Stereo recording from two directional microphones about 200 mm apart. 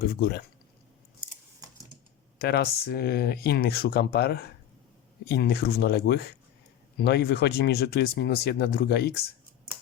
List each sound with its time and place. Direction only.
0.1 s speech: 50° left (ahead or behind)
2.4 s speech: 55° left (ahead or behind)